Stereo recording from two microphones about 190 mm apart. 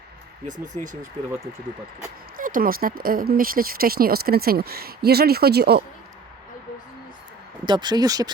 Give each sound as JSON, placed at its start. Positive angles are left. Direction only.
{"t": 0.4, "sound": "speech", "side_deg": -40}
{"t": 2.3, "sound": "speech", "side_deg": -45}
{"t": 7.6, "sound": "speech", "side_deg": -25}